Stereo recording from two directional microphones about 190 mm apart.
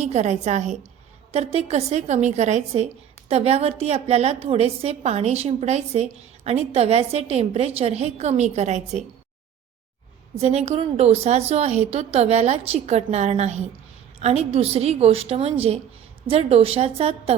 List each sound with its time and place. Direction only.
0.0 s a woman's voice: 35° right (ahead or behind)
10.4 s a woman's voice: 35° right (ahead or behind)